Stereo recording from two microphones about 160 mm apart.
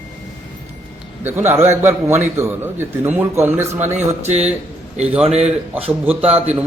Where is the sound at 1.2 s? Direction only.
15° right (ahead or behind).